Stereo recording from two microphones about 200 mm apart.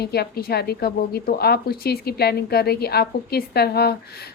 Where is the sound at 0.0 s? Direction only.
55° left (ahead or behind).